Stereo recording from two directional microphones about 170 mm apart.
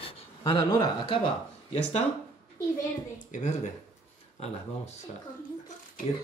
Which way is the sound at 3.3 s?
45° left (ahead or behind).